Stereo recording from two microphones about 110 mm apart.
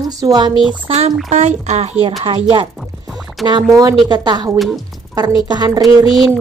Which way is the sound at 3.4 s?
35° right (ahead or behind).